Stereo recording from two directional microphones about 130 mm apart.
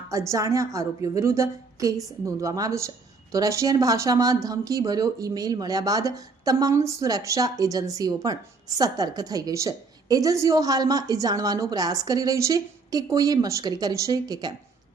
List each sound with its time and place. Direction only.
0.1 s speech: 25° right (ahead or behind)